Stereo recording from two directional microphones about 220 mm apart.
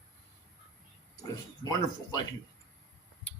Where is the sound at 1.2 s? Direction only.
15° left (ahead or behind).